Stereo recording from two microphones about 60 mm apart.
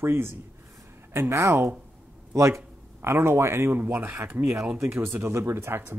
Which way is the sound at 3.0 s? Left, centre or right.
Right.